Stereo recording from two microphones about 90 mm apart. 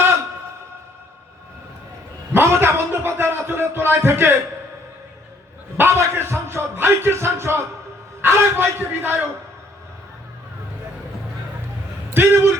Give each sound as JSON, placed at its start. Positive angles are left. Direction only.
{"t": 2.3, "sound": "a man's voice", "side_deg": -25}
{"t": 5.7, "sound": "a man's voice", "side_deg": -30}
{"t": 12.1, "sound": "a man's voice", "side_deg": -30}